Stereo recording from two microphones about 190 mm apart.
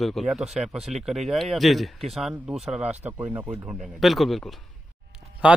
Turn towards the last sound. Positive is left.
turn(degrees=-5)  # may be behind; listen again after turning